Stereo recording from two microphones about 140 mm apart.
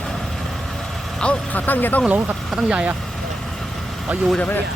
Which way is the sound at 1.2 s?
10° left (ahead or behind).